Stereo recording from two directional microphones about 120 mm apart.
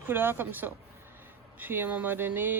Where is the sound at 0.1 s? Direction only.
20° right (ahead or behind).